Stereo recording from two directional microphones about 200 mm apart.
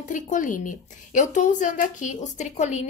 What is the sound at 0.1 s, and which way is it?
A woman's voice, 40° left (ahead or behind).